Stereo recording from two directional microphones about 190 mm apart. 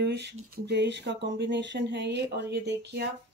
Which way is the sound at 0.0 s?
65° right (ahead or behind).